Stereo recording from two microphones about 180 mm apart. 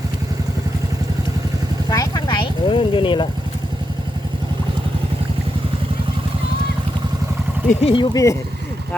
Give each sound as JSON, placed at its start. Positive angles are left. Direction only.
{"t": 1.9, "sound": "vehicle", "side_deg": 20}
{"t": 7.7, "sound": "speech", "side_deg": 35}
{"t": 8.1, "sound": "speech", "side_deg": 15}